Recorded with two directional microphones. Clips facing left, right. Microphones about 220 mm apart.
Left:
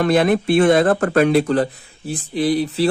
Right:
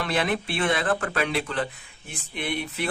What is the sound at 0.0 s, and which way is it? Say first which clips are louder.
Speech: left 11 dB; 45° left (ahead or behind).